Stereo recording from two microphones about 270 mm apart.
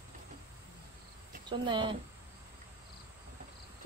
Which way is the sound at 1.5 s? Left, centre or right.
Centre.